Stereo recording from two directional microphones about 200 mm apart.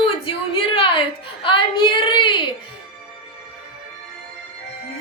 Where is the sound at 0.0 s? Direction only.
25° left (ahead or behind).